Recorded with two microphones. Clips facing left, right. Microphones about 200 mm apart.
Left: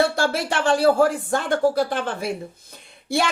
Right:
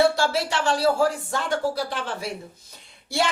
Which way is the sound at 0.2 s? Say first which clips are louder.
Left 2 dB; 55° left (ahead or behind).